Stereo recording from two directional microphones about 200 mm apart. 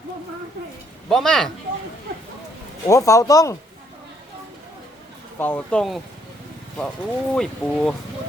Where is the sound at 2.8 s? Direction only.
15° left (ahead or behind).